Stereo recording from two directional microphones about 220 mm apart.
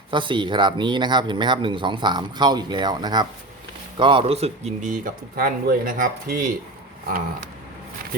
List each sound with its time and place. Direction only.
0.1 s speech: 20° right (ahead or behind); by 6.5 s 40° right (ahead or behind)